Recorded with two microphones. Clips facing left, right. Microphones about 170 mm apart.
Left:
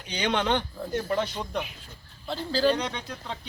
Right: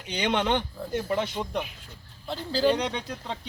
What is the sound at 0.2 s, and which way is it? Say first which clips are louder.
Speech: even; 15° right (ahead or behind).